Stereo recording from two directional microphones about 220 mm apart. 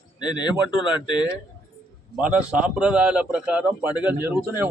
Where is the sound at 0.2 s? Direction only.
20° left (ahead or behind).